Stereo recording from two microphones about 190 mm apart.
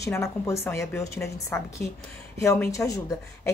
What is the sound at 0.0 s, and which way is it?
A woman's voice, 15° left (ahead or behind).